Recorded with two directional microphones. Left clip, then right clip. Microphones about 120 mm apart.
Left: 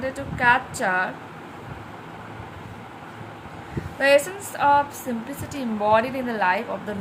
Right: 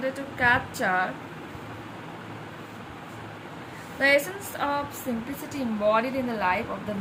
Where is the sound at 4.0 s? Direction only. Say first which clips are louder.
Left 4 dB; 35° left (ahead or behind).